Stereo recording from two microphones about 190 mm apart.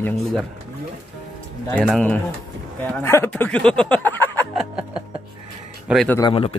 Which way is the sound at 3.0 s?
15° left (ahead or behind).